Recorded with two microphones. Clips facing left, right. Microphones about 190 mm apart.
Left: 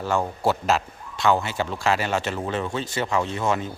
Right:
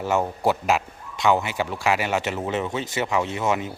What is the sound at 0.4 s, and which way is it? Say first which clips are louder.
Speech: left 1 dB; 15° right (ahead or behind).